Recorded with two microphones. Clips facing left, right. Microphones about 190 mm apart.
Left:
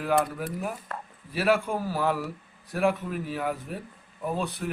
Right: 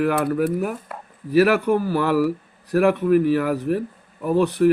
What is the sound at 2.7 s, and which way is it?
Speech, 70° right (ahead or behind).